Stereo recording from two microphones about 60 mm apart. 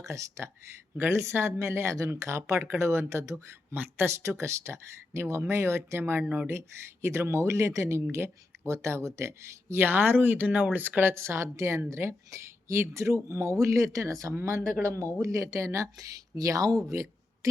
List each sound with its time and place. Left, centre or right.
0.0 s speech: right
0.9 s speech: right
6.5 s speech: right
11.1 s speech: right
16.9 s a sound: right